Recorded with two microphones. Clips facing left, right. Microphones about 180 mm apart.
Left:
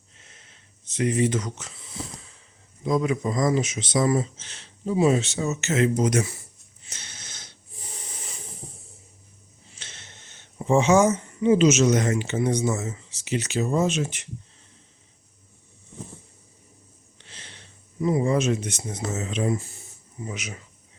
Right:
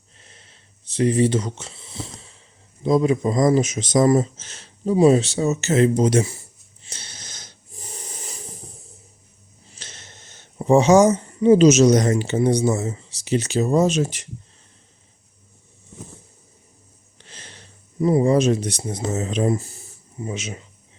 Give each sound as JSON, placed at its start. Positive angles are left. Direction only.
{"t": 0.2, "sound": "a sound", "side_deg": -35}
{"t": 2.8, "sound": "speech", "side_deg": -30}
{"t": 6.8, "sound": "snort", "side_deg": -30}
{"t": 9.7, "sound": "speech", "side_deg": -40}
{"t": 17.2, "sound": "speech", "side_deg": -45}
{"t": 20.2, "sound": "speech", "side_deg": -25}